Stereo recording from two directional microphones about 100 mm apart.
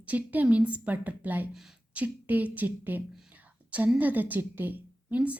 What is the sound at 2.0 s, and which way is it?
A woman's voice, 15° right (ahead or behind).